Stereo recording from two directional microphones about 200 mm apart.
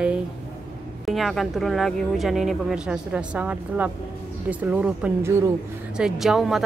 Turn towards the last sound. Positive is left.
turn(degrees=0)  # may be behind; listen again after turning